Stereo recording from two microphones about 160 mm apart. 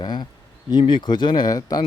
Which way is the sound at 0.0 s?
25° left (ahead or behind).